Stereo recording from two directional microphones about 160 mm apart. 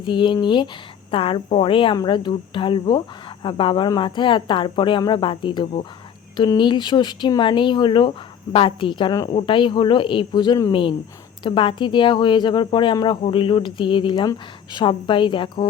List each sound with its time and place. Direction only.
0.0 s speech: 30° left (ahead or behind)